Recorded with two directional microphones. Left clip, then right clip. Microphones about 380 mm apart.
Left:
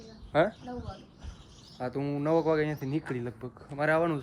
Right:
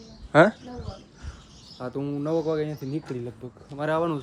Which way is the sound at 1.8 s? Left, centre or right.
Centre.